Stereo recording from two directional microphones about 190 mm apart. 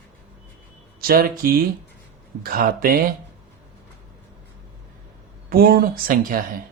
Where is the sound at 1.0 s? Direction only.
50° right (ahead or behind).